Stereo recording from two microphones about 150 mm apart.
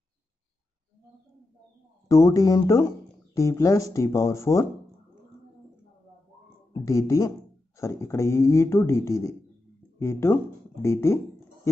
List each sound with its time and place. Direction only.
2.0 s speech: 20° left (ahead or behind)
6.7 s speech: 20° left (ahead or behind)